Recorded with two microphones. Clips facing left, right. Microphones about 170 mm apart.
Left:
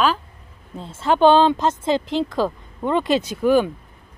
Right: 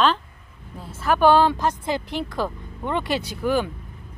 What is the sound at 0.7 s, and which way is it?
Speech, 25° left (ahead or behind).